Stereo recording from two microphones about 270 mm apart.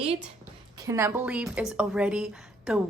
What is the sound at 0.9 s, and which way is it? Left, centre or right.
A woman's voice, centre.